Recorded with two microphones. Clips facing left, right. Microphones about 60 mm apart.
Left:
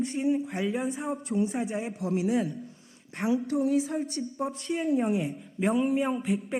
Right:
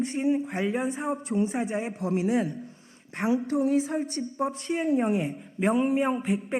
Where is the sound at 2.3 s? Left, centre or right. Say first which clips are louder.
Right 1 dB; right.